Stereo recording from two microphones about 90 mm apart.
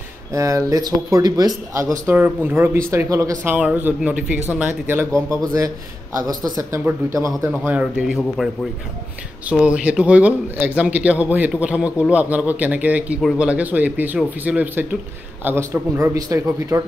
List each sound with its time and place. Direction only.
0.3 s speech: 35° right (ahead or behind)
2.1 s speech: 20° right (ahead or behind)
3.4 s a man's voice: 15° right (ahead or behind)
6.1 s speech: 40° right (ahead or behind)
7.7 s a man's voice: 10° right (ahead or behind)
9.5 s a man's voice: 15° right (ahead or behind)
15.4 s speech: 30° right (ahead or behind)